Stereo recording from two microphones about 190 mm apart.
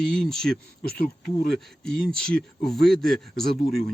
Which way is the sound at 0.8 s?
50° left (ahead or behind).